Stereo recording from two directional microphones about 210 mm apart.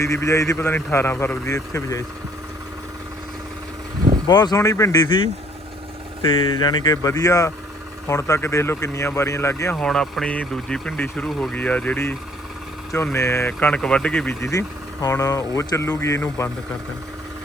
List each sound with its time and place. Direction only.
0.0 s speech: 15° left (ahead or behind)
4.3 s speech: 20° left (ahead or behind)
6.5 s speech: 20° left (ahead or behind)
13.1 s speech: 15° left (ahead or behind)